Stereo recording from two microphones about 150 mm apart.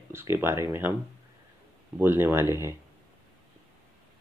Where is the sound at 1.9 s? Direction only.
15° right (ahead or behind).